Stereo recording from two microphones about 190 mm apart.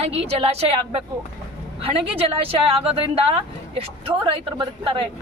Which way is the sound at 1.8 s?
30° right (ahead or behind).